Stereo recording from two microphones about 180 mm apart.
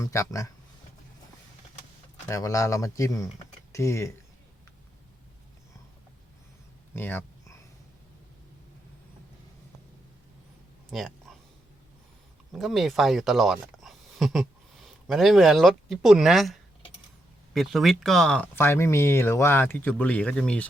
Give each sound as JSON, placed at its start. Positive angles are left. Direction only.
{"t": 0.0, "sound": "speech", "side_deg": 15}
{"t": 2.2, "sound": "speech", "side_deg": 15}
{"t": 6.9, "sound": "speech", "side_deg": 10}
{"t": 10.9, "sound": "a sound", "side_deg": 0}
{"t": 12.5, "sound": "speech", "side_deg": 0}